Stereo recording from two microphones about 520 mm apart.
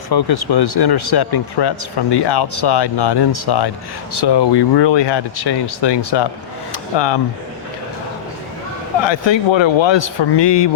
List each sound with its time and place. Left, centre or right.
0.1 s a man's voice: left
9.0 s a man's voice: left